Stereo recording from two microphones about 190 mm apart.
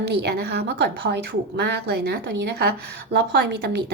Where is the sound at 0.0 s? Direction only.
60° right (ahead or behind).